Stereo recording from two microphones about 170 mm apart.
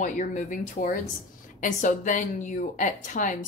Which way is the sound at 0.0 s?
50° left (ahead or behind).